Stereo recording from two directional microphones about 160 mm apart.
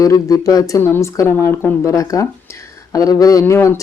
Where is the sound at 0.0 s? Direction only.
20° left (ahead or behind).